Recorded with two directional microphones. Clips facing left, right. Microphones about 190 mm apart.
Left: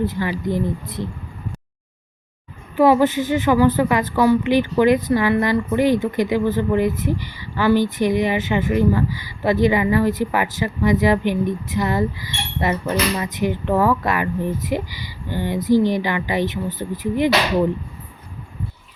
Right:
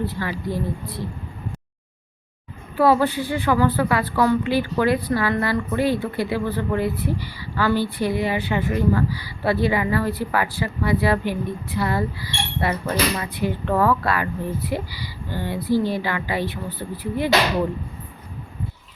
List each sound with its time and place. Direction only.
0.0 s a woman's voice: 15° left (ahead or behind)
2.7 s a woman's voice: 15° left (ahead or behind)